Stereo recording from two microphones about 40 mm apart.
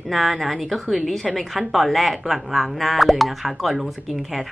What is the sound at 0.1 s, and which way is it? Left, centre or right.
A woman's voice, centre.